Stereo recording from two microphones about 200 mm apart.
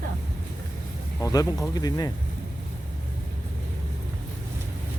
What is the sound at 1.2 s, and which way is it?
Speech, 20° left (ahead or behind).